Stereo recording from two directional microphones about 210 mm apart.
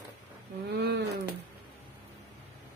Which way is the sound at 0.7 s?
50° right (ahead or behind).